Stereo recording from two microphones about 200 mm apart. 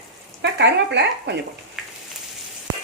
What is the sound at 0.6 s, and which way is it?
Stir, 60° right (ahead or behind).